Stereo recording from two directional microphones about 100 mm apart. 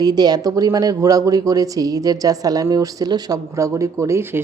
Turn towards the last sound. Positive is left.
turn(degrees=-25)  # may be behind; listen again after turning